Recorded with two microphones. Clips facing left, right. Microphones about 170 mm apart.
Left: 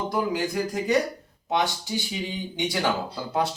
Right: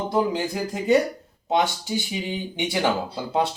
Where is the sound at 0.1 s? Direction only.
25° right (ahead or behind).